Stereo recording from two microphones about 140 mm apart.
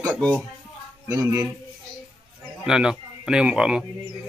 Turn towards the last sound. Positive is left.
turn(degrees=-5)  # may be behind; listen again after turning